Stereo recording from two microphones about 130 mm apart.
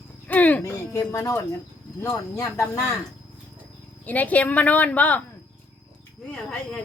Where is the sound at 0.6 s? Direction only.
25° left (ahead or behind).